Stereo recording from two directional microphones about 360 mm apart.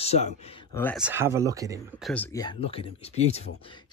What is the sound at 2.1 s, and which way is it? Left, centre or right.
Speech, centre.